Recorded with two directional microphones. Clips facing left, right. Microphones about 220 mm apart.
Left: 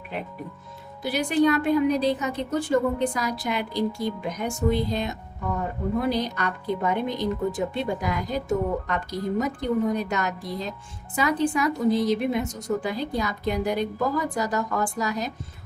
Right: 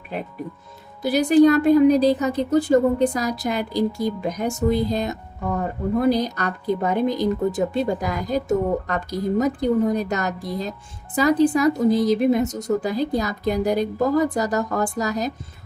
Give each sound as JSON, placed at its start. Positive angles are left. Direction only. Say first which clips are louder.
{"t": 1.0, "sound": "a woman's voice", "louder": "right 7 dB", "side_deg": -40}